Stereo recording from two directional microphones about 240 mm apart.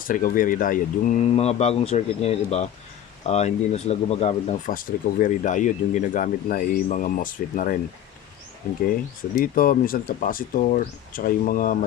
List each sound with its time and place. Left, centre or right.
0.0 s speech: left
9.3 s speech: left